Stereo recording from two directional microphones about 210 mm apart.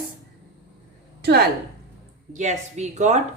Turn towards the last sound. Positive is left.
turn(degrees=-35)  # may be behind; listen again after turning